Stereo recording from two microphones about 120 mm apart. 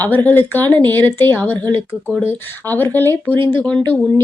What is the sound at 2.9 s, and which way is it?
Speech, 15° left (ahead or behind).